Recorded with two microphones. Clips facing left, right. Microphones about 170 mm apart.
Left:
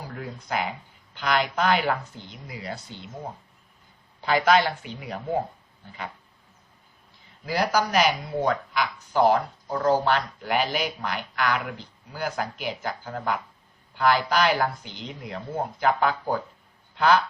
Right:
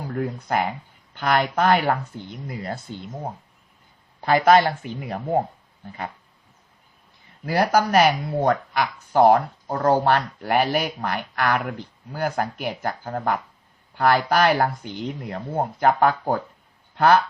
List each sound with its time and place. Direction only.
0.2 s speech: 55° right (ahead or behind)
4.2 s speech: 50° right (ahead or behind)
7.4 s speech: 55° right (ahead or behind)